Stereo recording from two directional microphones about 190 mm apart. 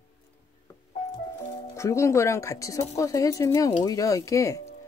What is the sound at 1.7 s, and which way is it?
Speech, 15° left (ahead or behind).